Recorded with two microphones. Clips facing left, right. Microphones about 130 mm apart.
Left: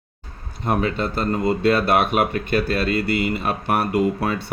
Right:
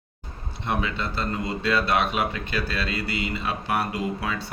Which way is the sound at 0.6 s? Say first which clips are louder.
Left 6 dB; 45° left (ahead or behind).